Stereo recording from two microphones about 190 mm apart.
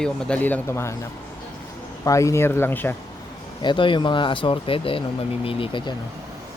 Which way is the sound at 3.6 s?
25° left (ahead or behind).